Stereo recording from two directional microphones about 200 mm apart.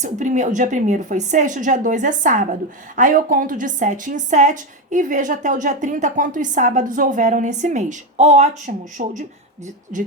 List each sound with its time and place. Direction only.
0.0 s a woman's voice: 35° right (ahead or behind)